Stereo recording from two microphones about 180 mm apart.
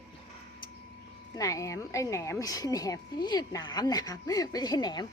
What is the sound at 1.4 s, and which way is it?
Speech, 20° left (ahead or behind).